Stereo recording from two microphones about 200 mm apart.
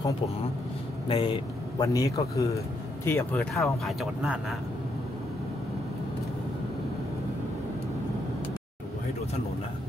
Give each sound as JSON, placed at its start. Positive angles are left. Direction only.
{"t": 1.0, "sound": "speech", "side_deg": 30}
{"t": 1.8, "sound": "a man's voice", "side_deg": 15}
{"t": 3.5, "sound": "speech", "side_deg": 0}